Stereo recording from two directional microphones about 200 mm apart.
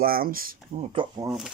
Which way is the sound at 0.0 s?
45° right (ahead or behind).